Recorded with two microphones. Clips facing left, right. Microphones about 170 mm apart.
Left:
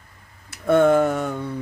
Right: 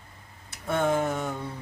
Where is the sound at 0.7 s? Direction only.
65° left (ahead or behind).